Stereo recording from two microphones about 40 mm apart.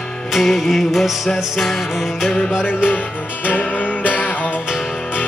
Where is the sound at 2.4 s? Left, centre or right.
Right.